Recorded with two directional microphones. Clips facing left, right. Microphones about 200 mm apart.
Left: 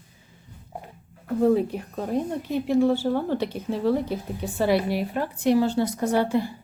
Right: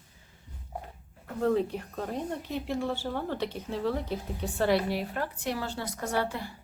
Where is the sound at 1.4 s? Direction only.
10° left (ahead or behind).